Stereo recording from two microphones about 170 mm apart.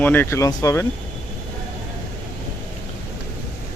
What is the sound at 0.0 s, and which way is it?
Speech, 10° left (ahead or behind).